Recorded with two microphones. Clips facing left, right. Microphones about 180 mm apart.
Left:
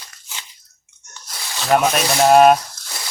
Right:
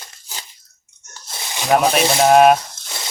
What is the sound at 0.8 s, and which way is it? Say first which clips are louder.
Sneeze: right 1 dB; 35° right (ahead or behind).